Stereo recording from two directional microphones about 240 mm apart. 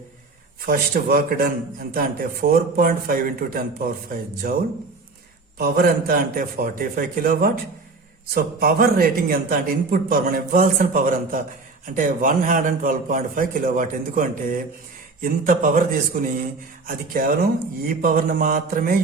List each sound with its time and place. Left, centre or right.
0.6 s speech: right